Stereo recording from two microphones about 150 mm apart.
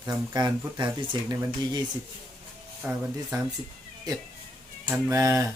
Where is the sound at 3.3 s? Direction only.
25° right (ahead or behind).